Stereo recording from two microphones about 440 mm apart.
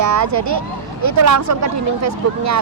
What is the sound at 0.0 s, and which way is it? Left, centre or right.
Speech, right.